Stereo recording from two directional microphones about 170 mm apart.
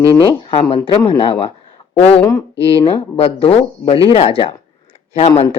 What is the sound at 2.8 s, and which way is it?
Speech, 35° left (ahead or behind).